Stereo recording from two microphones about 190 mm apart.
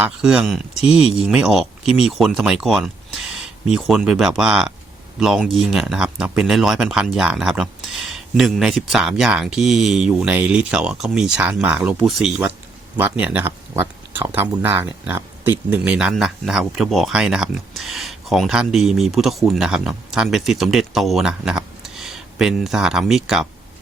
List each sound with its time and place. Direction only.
0.0 s speech: 5° right (ahead or behind)